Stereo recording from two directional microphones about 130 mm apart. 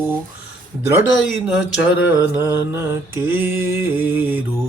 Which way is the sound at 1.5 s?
10° right (ahead or behind).